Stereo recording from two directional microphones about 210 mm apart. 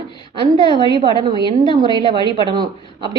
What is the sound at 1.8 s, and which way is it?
A woman's voice, 20° right (ahead or behind).